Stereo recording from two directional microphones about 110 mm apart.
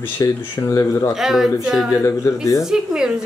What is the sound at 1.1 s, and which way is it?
Speech, 5° right (ahead or behind).